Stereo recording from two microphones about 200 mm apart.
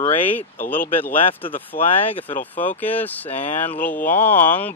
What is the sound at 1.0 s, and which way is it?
Speech, 10° left (ahead or behind).